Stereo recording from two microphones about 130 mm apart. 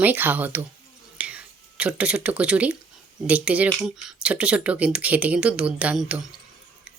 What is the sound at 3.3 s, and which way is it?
Speech, 10° right (ahead or behind).